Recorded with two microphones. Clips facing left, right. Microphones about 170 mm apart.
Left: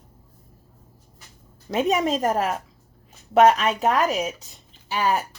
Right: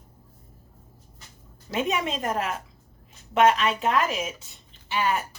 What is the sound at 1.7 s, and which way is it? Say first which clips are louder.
A woman's voice: left 5 dB; 40° left (ahead or behind).